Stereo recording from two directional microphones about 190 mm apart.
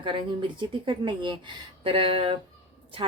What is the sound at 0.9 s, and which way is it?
A woman's voice, 25° right (ahead or behind).